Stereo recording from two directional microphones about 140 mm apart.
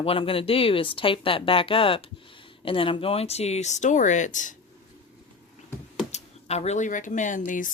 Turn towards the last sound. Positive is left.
turn(degrees=70)  # may be behind; listen again after turning